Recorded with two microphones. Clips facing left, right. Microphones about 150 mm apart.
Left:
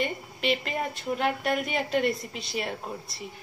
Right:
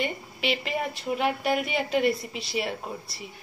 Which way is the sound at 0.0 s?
Centre (ahead or behind).